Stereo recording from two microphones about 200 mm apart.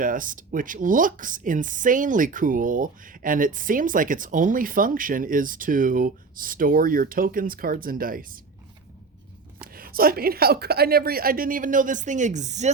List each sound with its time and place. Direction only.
0.0 s speech: 40° right (ahead or behind)
9.6 s speech: 45° right (ahead or behind)